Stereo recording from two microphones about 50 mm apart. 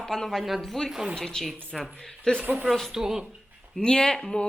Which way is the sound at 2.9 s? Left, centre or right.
Centre.